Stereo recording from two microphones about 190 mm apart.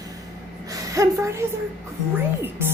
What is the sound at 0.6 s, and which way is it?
Speech, 20° right (ahead or behind).